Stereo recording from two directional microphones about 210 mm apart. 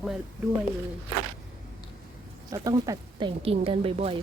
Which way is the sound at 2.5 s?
15° right (ahead or behind).